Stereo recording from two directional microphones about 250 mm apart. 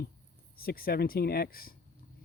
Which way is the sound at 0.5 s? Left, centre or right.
Left.